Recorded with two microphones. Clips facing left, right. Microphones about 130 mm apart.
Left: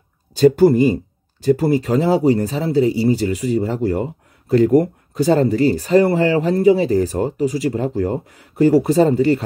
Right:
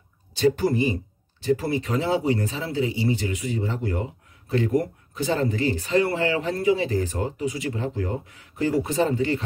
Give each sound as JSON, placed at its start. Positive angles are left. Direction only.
{"t": 0.4, "sound": "speech", "side_deg": 40}